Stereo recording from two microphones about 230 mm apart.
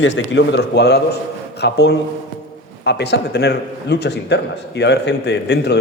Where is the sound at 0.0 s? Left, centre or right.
Left.